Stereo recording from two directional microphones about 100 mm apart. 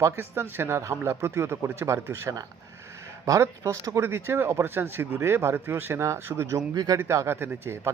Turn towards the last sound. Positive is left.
turn(degrees=-25)  # may be behind; listen again after turning